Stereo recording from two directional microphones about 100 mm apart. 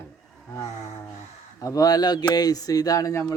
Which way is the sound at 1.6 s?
35° left (ahead or behind).